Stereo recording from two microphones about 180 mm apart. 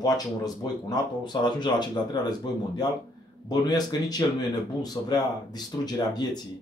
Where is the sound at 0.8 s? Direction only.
25° left (ahead or behind).